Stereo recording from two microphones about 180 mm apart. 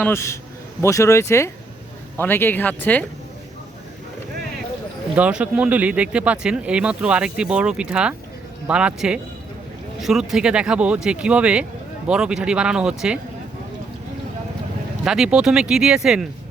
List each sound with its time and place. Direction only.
0.0 s speech: 15° left (ahead or behind)
5.1 s speech: 5° right (ahead or behind)
15.0 s speech: 5° right (ahead or behind)